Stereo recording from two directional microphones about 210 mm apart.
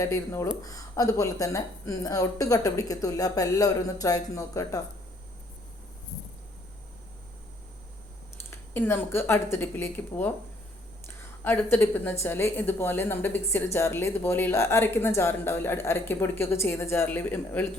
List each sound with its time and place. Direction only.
0.0 s speech: 15° left (ahead or behind)
8.4 s a woman's voice: 10° left (ahead or behind)